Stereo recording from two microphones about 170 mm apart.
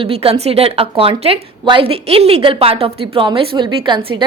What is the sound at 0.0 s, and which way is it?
A woman's voice, 35° right (ahead or behind).